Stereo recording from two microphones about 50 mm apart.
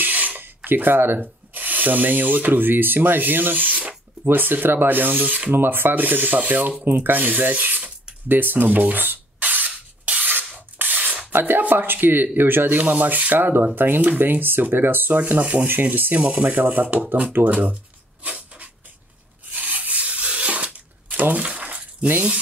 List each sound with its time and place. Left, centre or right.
0.0 s a sound: right
0.7 s speech: right
4.2 s filing: right
6.8 s a sound: right
10.5 s rub: right
11.3 s speech: right
15.1 s speech: right
15.6 s filing: right
16.2 s speech: right
18.2 s writing: right
19.5 s rub: right